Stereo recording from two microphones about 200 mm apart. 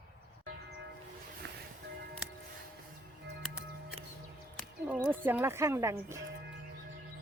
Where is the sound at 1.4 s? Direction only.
55° right (ahead or behind).